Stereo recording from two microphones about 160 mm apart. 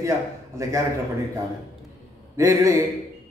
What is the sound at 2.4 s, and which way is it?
Speech, 20° right (ahead or behind).